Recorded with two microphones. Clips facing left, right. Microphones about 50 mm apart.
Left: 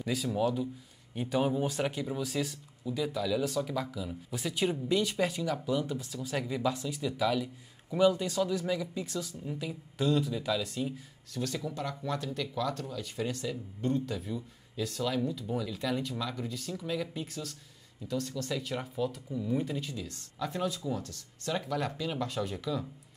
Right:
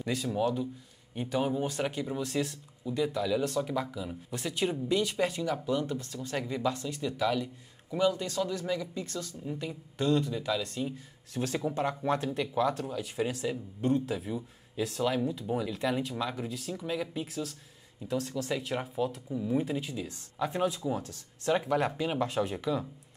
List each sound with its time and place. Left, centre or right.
0.0 s speech: centre
4.3 s speech: centre
11.3 s speech: right; by 17.6 s centre
18.0 s speech: centre